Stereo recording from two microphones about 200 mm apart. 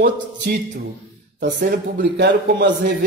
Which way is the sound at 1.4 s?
60° right (ahead or behind).